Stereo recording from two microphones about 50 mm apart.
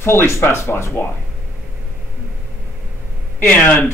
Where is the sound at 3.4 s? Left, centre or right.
Left.